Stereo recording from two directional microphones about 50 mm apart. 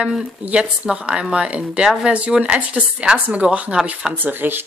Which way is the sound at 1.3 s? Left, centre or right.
Right.